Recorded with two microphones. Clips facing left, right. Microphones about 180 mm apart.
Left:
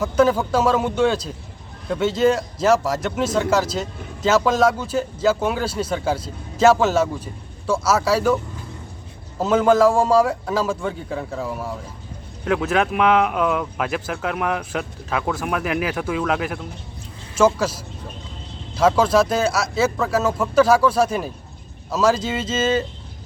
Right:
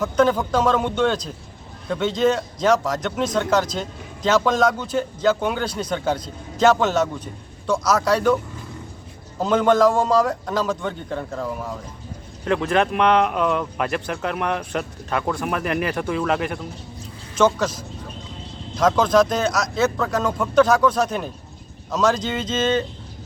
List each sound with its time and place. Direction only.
0.0 s speech: 10° left (ahead or behind)
9.4 s speech: 5° left (ahead or behind)